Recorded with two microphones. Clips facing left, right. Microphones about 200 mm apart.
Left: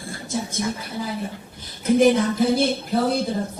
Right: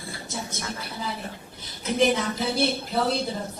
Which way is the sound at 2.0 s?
50° left (ahead or behind).